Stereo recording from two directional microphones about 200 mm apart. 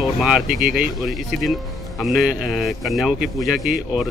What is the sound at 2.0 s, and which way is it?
Speech, centre (ahead or behind).